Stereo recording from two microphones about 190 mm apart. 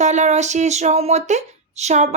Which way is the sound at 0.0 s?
40° right (ahead or behind).